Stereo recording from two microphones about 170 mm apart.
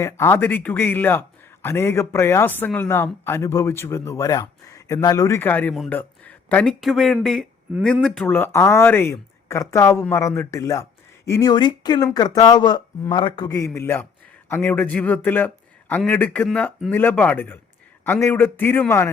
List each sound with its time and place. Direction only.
0.0 s speech: 15° left (ahead or behind)